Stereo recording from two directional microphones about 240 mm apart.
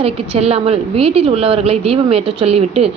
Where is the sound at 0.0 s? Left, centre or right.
Right.